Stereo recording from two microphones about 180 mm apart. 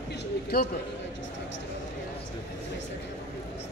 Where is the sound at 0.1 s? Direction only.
65° left (ahead or behind).